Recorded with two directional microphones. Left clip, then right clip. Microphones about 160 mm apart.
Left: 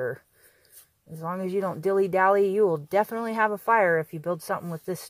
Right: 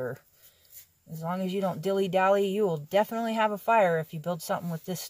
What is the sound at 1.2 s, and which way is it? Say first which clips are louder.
Speech: left 2 dB; 35° left (ahead or behind).